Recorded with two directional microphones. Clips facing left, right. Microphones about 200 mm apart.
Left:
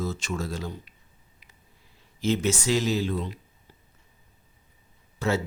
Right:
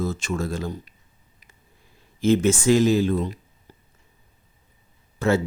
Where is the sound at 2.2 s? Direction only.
50° right (ahead or behind).